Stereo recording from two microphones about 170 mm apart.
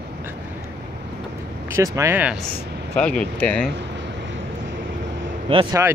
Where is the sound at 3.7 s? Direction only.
90° right.